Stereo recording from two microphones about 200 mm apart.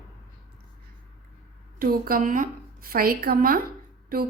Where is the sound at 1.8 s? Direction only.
45° right (ahead or behind).